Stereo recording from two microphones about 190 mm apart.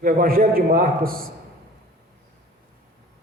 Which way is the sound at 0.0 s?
50° right (ahead or behind).